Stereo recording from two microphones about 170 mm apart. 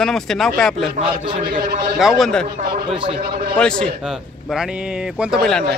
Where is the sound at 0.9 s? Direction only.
40° right (ahead or behind).